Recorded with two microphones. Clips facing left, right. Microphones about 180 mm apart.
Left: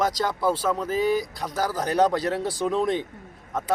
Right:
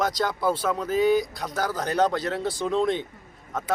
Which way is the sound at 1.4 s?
30° left (ahead or behind).